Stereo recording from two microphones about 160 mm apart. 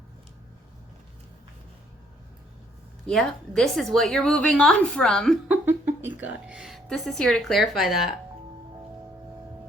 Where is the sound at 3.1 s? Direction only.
Centre (ahead or behind).